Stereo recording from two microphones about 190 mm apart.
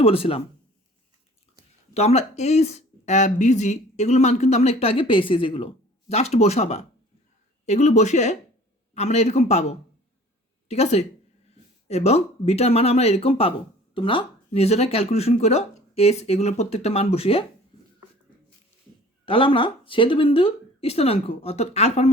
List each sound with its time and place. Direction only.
0.0 s speech: 30° left (ahead or behind)
1.9 s speech: 35° left (ahead or behind)
19.2 s speech: 30° left (ahead or behind)